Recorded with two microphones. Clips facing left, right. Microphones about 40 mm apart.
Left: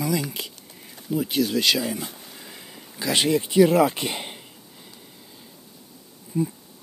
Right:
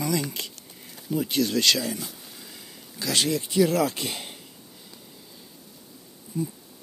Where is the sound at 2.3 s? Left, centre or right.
Left.